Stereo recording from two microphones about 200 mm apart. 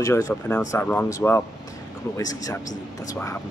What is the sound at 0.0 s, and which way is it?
Speech, 15° left (ahead or behind).